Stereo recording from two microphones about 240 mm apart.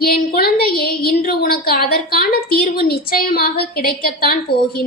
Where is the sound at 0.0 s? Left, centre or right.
Left.